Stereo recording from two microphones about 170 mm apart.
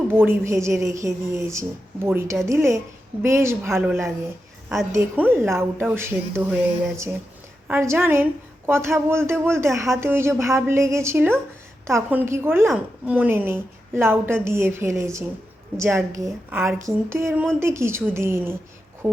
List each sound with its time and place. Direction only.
0.2 s a woman's voice: 15° right (ahead or behind)